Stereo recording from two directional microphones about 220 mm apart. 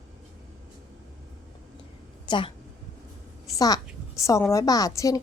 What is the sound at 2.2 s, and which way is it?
Speech, 20° left (ahead or behind).